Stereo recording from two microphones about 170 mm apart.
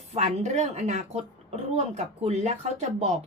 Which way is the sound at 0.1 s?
40° right (ahead or behind).